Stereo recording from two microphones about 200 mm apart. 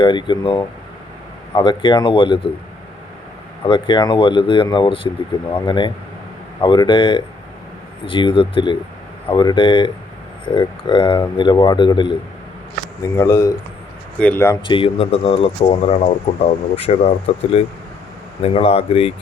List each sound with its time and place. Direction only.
0.0 s speech: 25° left (ahead or behind)
3.6 s speech: 25° left (ahead or behind)
13.1 s speech: 15° left (ahead or behind)
14.7 s speech: 25° left (ahead or behind)